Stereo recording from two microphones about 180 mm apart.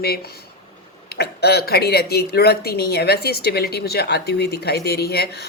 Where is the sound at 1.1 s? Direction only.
60° left (ahead or behind).